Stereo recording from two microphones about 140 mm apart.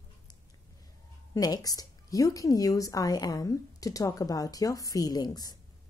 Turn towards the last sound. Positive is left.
turn(degrees=25)  # may be behind; listen again after turning